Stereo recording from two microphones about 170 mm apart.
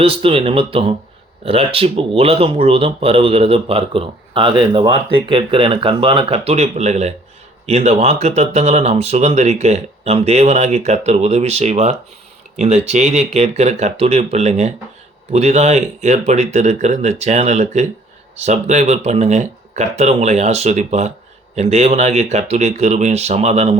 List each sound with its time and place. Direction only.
0.0 s speech: 35° right (ahead or behind)